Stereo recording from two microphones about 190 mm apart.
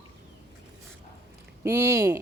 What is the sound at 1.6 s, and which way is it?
Speech, 15° right (ahead or behind).